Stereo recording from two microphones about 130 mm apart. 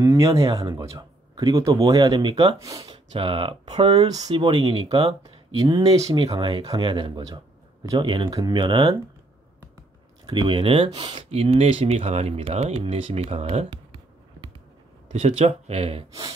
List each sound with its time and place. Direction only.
0.0 s speech: 25° right (ahead or behind)
2.6 s speech: 25° right (ahead or behind)
2.9 s speech: 45° right (ahead or behind); by 6.1 s 25° right (ahead or behind)
6.1 s speech: 40° right (ahead or behind)
10.2 s speech: 40° right (ahead or behind)
13.7 s a sound: 35° right (ahead or behind)
15.1 s speech: 50° right (ahead or behind)